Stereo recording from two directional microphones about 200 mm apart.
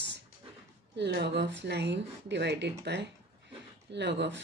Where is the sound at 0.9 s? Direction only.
60° right (ahead or behind).